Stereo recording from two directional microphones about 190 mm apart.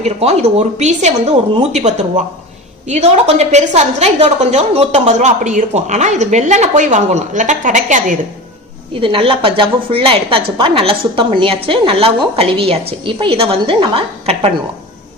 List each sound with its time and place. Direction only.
0.0 s a woman's voice: 35° right (ahead or behind)
9.0 s a woman's voice: 30° right (ahead or behind)